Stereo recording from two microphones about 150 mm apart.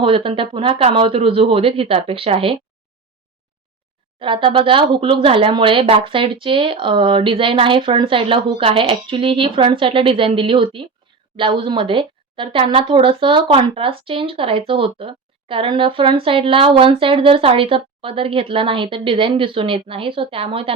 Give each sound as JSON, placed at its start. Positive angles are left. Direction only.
{"t": 0.0, "sound": "speech", "side_deg": -35}
{"t": 4.2, "sound": "speech", "side_deg": -35}